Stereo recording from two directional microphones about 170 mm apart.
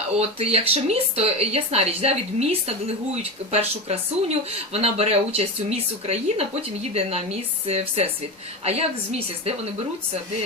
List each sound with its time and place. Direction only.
0.2 s speech: 35° right (ahead or behind)